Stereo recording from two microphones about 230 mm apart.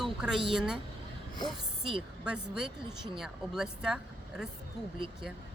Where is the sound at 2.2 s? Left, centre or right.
Centre.